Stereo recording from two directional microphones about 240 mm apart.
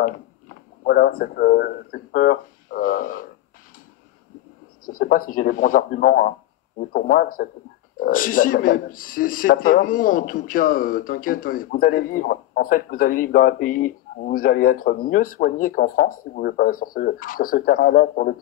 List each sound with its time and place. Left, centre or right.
0.8 s a man's voice: left
4.8 s a man's voice: left